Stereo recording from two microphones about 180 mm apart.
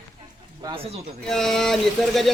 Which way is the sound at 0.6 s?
30° right (ahead or behind).